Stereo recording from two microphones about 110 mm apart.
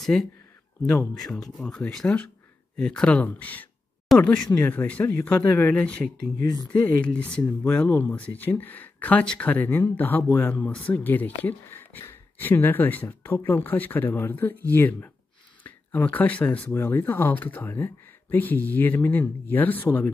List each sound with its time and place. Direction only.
0.0 s speech: 5° left (ahead or behind)